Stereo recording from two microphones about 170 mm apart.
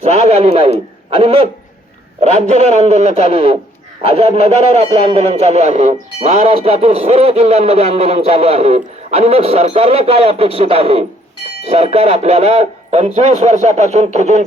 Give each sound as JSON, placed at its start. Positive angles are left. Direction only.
{"t": 0.0, "sound": "a man's voice", "side_deg": -40}